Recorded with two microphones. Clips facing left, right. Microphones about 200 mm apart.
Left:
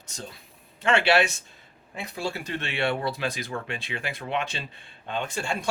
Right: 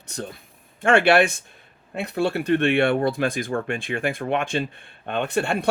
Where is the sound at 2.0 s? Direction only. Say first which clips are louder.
Right 9 dB; 65° right (ahead or behind).